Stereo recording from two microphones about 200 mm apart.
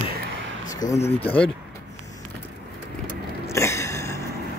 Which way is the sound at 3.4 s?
15° left (ahead or behind).